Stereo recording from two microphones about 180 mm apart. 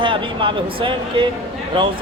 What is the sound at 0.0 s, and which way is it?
Speech, 30° right (ahead or behind).